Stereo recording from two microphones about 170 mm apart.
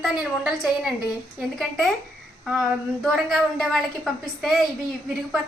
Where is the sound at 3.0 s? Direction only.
Centre (ahead or behind).